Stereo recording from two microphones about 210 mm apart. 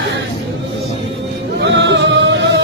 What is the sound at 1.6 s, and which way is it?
Music, 60° right (ahead or behind).